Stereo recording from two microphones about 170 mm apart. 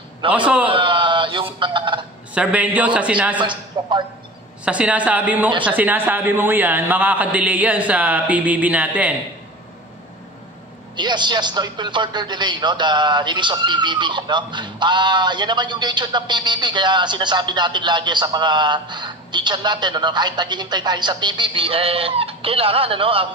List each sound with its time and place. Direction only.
0.2 s a man's voice: 30° right (ahead or behind)
0.7 s a sound: 30° right (ahead or behind)
2.3 s a man's voice: 10° right (ahead or behind)
3.3 s a man's voice: 25° right (ahead or behind)
4.6 s a man's voice: 5° right (ahead or behind)
11.0 s a man's voice: 25° right (ahead or behind)